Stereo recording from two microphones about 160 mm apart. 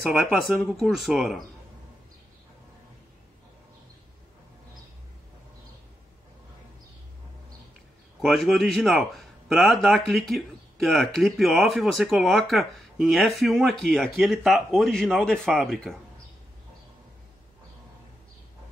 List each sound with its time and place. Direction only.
0.0 s speech: centre (ahead or behind)
8.2 s speech: centre (ahead or behind)